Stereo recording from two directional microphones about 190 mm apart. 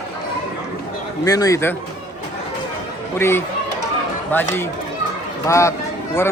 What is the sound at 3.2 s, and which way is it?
Speech, 10° left (ahead or behind).